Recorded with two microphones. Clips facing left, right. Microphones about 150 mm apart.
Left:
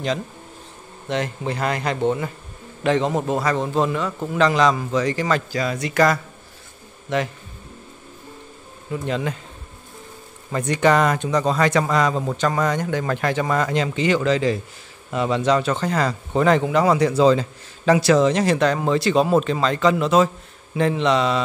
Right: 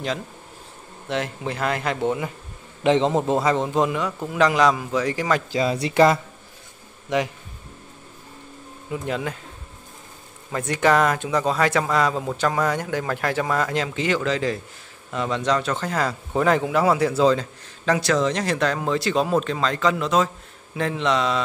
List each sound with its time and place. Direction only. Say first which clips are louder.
1.0 s speech: left 2 dB; centre (ahead or behind)
2.8 s a man's voice: right 1 dB; 20° right (ahead or behind)
5.5 s speech: right 2 dB; 25° right (ahead or behind)
7.1 s a man's voice: even; 15° right (ahead or behind)
8.9 s speech: left 2 dB; 5° right (ahead or behind)
10.5 s speech: left 2 dB; 5° right (ahead or behind)